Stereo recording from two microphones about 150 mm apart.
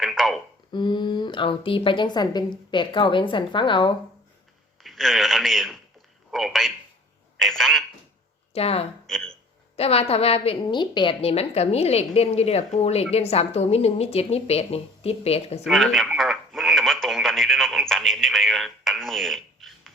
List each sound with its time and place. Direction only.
0.0 s a sound: centre (ahead or behind)
0.7 s a woman's voice: 30° left (ahead or behind)
4.8 s speech: centre (ahead or behind)
8.5 s a woman's voice: 40° left (ahead or behind)
9.0 s speech: 5° left (ahead or behind)
9.7 s a woman's voice: 40° left (ahead or behind)
15.6 s speech: centre (ahead or behind)